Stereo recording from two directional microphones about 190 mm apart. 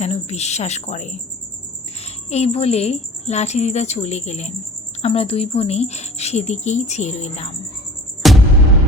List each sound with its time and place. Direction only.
0.0 s a woman's voice: 35° left (ahead or behind)
8.2 s music: centre (ahead or behind)